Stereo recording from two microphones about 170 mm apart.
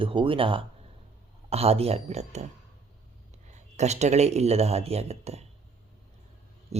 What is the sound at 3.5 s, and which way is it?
A man's voice, 40° right (ahead or behind).